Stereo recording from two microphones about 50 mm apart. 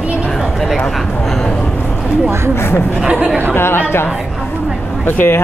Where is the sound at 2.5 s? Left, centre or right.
Left.